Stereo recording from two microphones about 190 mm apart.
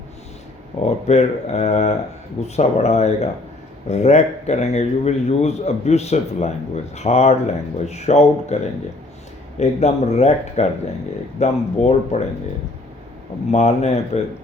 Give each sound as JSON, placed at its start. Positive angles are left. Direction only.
{"t": 1.0, "sound": "a man's voice", "side_deg": 35}
{"t": 9.6, "sound": "a man's voice", "side_deg": 35}
{"t": 13.5, "sound": "a man's voice", "side_deg": 35}